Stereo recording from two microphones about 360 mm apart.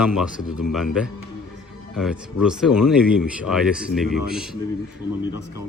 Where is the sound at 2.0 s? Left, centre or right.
Centre.